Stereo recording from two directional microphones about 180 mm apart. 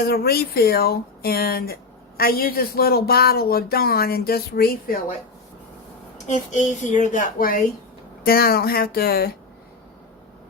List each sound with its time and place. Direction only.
0.0 s speech: 60° left (ahead or behind)
6.2 s a woman's voice: 40° left (ahead or behind); by 9.3 s 55° left (ahead or behind)